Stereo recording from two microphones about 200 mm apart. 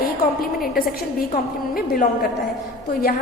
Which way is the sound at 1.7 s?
45° left (ahead or behind).